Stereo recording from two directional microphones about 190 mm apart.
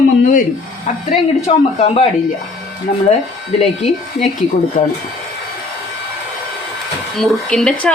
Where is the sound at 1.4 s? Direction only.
35° left (ahead or behind).